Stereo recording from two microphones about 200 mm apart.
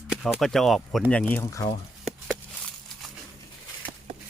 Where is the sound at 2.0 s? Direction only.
5° left (ahead or behind).